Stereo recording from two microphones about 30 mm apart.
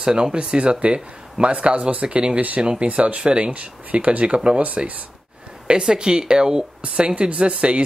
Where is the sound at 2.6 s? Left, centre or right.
Right.